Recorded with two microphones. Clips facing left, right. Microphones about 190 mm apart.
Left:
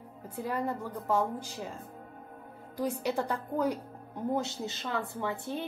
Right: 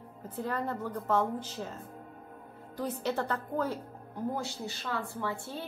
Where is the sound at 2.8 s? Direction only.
10° left (ahead or behind).